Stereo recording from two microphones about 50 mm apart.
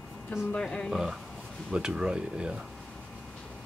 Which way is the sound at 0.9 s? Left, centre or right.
Centre.